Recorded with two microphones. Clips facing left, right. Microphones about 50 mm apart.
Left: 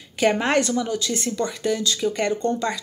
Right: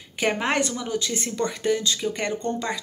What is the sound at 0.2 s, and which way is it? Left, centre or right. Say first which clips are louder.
A woman's voice: left 4 dB; centre.